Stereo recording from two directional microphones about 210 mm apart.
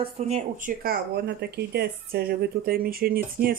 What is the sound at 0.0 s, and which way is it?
A woman's voice, 30° right (ahead or behind).